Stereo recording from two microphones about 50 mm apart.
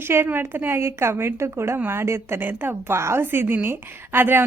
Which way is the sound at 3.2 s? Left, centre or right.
Right.